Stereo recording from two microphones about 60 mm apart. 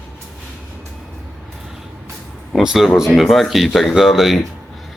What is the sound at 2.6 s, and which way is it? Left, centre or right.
Speech, centre.